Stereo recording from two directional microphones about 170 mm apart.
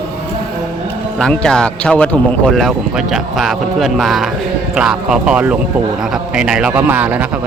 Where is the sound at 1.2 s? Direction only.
5° left (ahead or behind).